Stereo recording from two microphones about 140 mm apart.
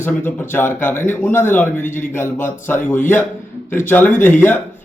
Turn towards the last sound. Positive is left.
turn(degrees=15)  # may be behind; listen again after turning